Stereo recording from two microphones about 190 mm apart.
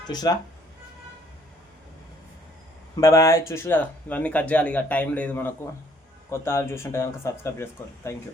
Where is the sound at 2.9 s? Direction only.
15° left (ahead or behind).